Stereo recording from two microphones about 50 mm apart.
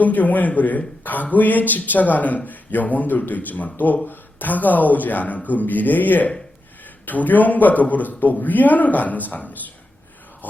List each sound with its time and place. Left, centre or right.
0.0 s a man's voice: left